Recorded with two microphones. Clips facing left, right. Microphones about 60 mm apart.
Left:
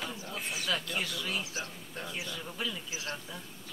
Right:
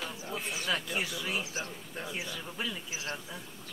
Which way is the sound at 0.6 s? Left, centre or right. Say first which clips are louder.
Right 1 dB; centre.